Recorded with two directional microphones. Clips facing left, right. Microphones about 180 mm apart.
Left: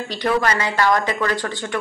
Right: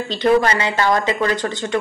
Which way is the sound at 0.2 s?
25° right (ahead or behind).